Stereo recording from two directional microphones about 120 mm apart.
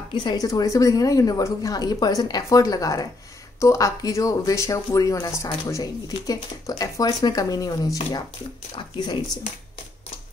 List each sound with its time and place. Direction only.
0.1 s a woman's voice: 40° left (ahead or behind)